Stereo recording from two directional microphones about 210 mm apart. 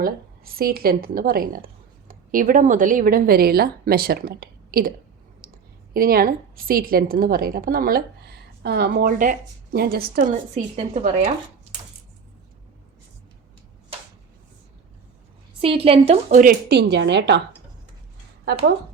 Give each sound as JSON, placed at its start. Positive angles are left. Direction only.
{"t": 0.0, "sound": "a woman's voice", "side_deg": -45}
{"t": 15.6, "sound": "a woman's voice", "side_deg": -25}